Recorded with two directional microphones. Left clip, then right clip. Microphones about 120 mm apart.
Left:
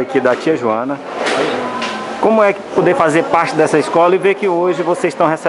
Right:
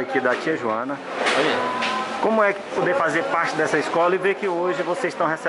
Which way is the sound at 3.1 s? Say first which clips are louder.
Left 8 dB; 45° left (ahead or behind).